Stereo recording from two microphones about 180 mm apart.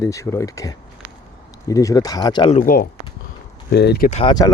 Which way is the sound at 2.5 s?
50° left (ahead or behind).